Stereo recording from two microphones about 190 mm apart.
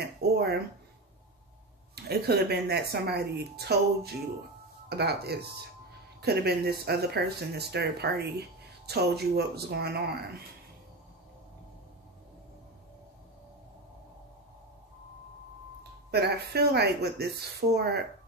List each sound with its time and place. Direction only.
0.0 s speech: 60° right (ahead or behind)
2.0 s speech: 60° right (ahead or behind)
16.1 s speech: 60° right (ahead or behind)